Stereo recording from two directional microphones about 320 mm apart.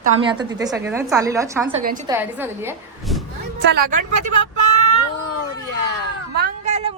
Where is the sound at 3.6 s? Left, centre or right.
Right.